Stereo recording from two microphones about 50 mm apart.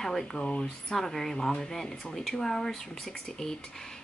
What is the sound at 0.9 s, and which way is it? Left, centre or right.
Speech, centre.